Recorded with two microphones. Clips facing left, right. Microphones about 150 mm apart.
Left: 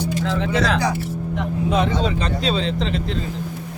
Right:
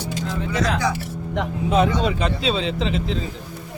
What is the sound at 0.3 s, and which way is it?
Speech, 90° left.